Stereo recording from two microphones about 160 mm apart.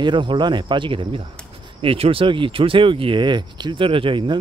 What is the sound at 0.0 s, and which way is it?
Speech, 30° right (ahead or behind).